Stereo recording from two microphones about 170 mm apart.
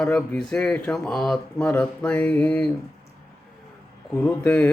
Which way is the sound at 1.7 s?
10° left (ahead or behind).